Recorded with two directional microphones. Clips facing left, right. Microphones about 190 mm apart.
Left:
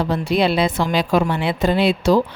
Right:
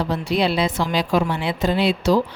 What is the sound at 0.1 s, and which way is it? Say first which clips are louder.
A woman's voice: left 3 dB; 55° left (ahead or behind).